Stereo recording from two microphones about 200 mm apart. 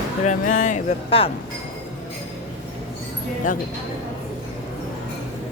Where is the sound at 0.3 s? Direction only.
40° left (ahead or behind).